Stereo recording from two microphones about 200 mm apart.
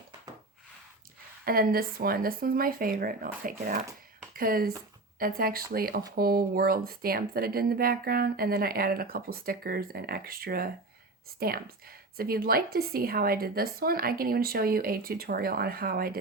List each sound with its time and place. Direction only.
1.5 s a woman's voice: 45° right (ahead or behind)